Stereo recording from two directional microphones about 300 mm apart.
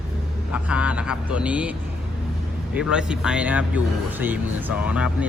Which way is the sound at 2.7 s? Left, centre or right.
Centre.